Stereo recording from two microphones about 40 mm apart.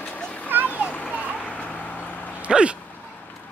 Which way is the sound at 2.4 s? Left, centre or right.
Right.